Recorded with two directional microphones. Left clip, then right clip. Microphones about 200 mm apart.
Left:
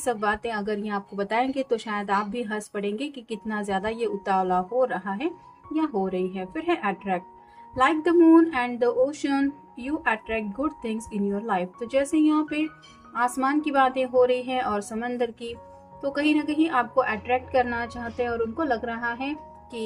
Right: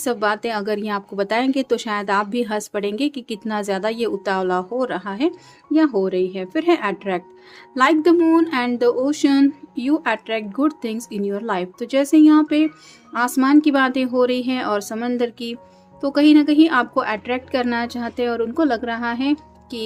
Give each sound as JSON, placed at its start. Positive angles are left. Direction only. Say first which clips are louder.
{"t": 0.0, "sound": "speech", "louder": "right 5 dB", "side_deg": -50}